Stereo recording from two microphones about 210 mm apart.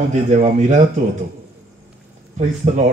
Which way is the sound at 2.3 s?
30° right (ahead or behind).